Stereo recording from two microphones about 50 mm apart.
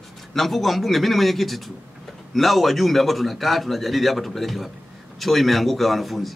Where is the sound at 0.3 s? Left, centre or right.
Centre.